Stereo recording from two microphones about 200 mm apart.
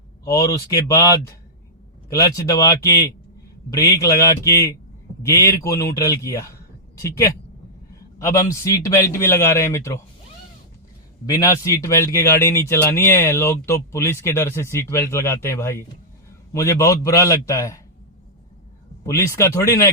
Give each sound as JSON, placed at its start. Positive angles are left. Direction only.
{"t": 0.3, "sound": "speech", "side_deg": 15}
{"t": 8.2, "sound": "speech", "side_deg": 15}
{"t": 11.3, "sound": "speech", "side_deg": 15}
{"t": 19.0, "sound": "speech", "side_deg": 15}